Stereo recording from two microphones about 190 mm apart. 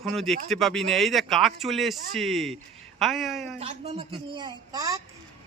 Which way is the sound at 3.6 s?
30° right (ahead or behind).